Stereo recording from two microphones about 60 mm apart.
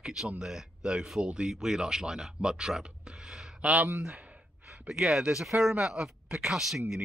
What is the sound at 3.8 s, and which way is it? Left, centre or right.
Speech, right.